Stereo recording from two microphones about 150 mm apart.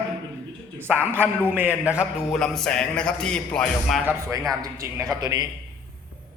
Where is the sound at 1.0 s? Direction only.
15° right (ahead or behind); by 4.0 s 5° left (ahead or behind).